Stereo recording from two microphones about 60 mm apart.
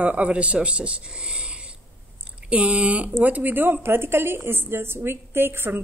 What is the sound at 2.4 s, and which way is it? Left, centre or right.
A woman's voice, right.